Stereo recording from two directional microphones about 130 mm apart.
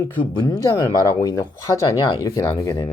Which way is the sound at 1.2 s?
30° left (ahead or behind).